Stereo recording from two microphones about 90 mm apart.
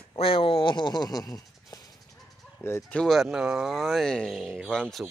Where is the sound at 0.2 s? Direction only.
90° left; by 1.8 s 45° left (ahead or behind).